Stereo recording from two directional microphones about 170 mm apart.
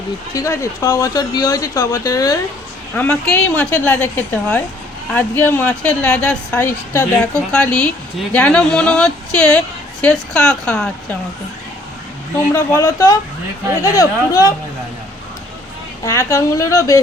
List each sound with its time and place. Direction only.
0.3 s speech: 15° left (ahead or behind)
2.9 s a woman's voice: 10° left (ahead or behind)
12.7 s speech: 20° left (ahead or behind)
16.0 s speech: 20° left (ahead or behind)